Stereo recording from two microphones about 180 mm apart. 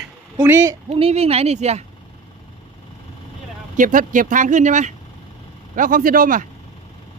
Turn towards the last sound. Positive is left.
turn(degrees=-50)  # may be behind; listen again after turning